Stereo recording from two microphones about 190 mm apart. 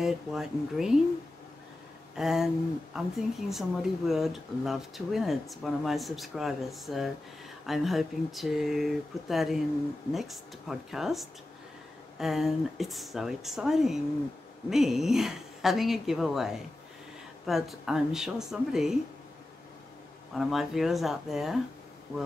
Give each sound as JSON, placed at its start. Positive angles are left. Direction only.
{"t": 0.0, "sound": "speech", "side_deg": 0}
{"t": 2.1, "sound": "speech", "side_deg": 0}
{"t": 20.3, "sound": "speech", "side_deg": 0}